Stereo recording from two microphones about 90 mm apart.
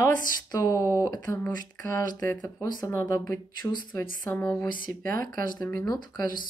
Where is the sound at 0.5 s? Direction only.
40° left (ahead or behind).